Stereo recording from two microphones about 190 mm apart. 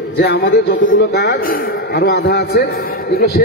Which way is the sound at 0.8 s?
85° left.